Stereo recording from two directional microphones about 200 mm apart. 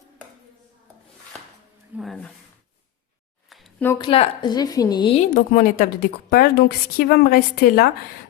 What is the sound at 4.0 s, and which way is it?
A woman's voice, 25° left (ahead or behind).